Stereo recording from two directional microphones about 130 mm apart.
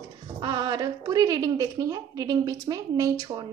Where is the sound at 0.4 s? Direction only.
35° right (ahead or behind).